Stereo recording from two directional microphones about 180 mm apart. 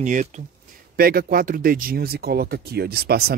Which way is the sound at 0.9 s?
55° right (ahead or behind).